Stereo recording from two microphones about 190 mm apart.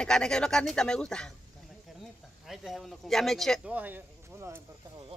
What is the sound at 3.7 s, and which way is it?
Speech, 10° right (ahead or behind).